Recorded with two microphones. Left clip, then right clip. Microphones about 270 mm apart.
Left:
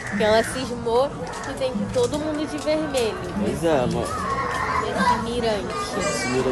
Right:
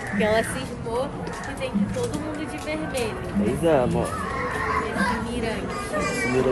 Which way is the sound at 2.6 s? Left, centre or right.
Centre.